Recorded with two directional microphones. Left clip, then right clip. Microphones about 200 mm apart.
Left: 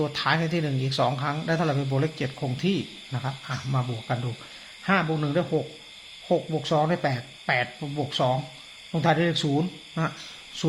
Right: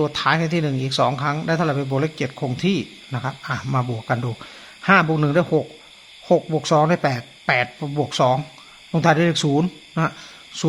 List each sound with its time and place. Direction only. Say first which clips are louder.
0.0 s speech: right 5 dB; 25° right (ahead or behind)